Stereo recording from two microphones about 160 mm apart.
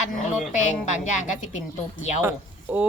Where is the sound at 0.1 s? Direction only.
50° left (ahead or behind).